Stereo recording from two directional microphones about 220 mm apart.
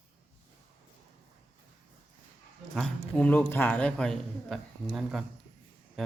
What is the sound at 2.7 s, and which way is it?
A man's voice, 5° left (ahead or behind).